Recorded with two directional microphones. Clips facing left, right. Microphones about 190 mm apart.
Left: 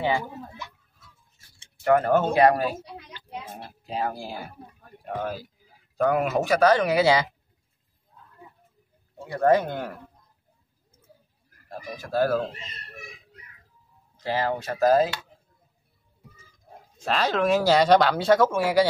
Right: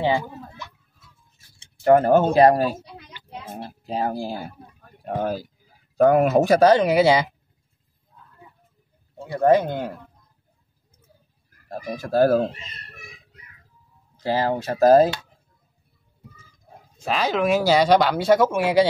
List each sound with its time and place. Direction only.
1.9 s speech: 30° right (ahead or behind)
9.3 s speech: 20° right (ahead or behind)
11.7 s speech: 45° right (ahead or behind)
14.2 s speech: 30° right (ahead or behind)
17.0 s speech: 10° right (ahead or behind)